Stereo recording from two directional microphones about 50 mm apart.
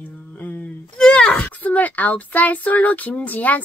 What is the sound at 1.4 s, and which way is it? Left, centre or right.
Speech, left.